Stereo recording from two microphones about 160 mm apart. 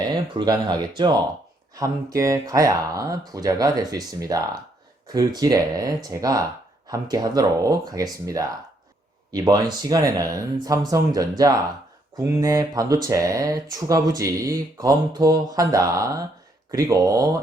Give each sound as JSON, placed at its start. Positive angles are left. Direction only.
{"t": 0.0, "sound": "speech", "side_deg": -25}
{"t": 9.4, "sound": "speech", "side_deg": -25}